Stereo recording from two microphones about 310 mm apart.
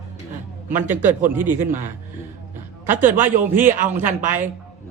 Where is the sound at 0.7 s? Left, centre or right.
Centre.